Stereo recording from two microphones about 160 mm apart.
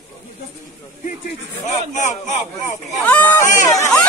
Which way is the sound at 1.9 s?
50° left (ahead or behind).